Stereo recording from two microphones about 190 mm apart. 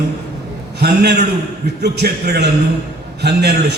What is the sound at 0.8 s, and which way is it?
A man's voice, 60° right (ahead or behind).